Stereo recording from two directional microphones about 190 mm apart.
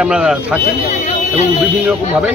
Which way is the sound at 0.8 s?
35° left (ahead or behind).